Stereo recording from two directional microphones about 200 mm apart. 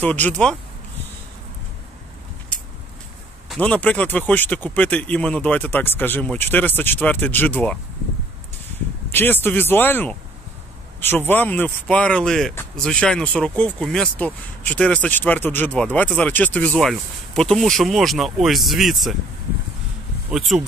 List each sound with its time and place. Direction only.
0.0 s speech: 10° left (ahead or behind)
3.4 s speech: 5° left (ahead or behind)
9.1 s speech: 10° left (ahead or behind)
20.2 s speech: 5° right (ahead or behind)